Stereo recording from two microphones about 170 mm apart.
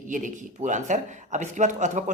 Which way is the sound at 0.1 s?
50° right (ahead or behind).